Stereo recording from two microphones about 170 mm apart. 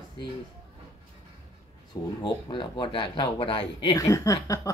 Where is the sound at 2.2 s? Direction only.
30° left (ahead or behind).